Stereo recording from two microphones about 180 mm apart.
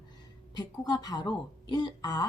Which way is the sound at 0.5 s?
25° left (ahead or behind).